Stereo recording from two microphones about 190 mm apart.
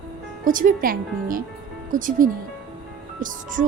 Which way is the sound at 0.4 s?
45° right (ahead or behind).